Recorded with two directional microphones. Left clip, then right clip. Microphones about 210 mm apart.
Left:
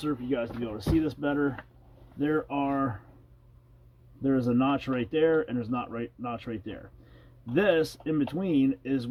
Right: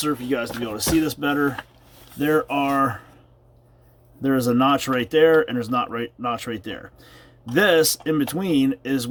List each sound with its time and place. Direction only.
0.0 s speech: 15° right (ahead or behind)
4.2 s speech: 20° right (ahead or behind)